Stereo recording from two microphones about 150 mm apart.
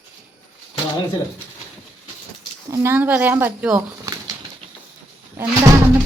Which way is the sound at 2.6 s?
20° right (ahead or behind).